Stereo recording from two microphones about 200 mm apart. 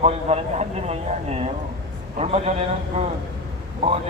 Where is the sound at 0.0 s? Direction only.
35° right (ahead or behind).